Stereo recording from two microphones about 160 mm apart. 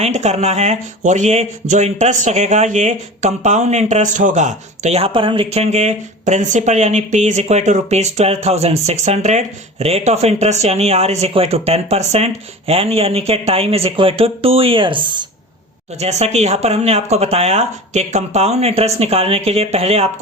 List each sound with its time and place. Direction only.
0.0 s speech: 45° right (ahead or behind)
16.0 s speech: 45° right (ahead or behind)